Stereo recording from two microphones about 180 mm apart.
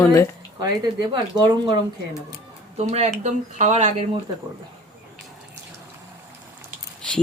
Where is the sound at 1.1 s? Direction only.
25° right (ahead or behind).